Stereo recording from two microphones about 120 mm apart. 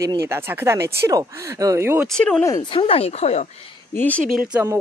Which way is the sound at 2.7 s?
50° left (ahead or behind).